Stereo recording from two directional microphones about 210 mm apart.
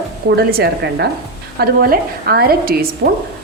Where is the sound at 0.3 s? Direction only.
50° right (ahead or behind).